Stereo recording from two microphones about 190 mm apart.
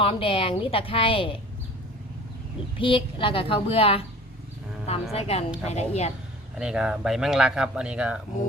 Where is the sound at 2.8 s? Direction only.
25° left (ahead or behind).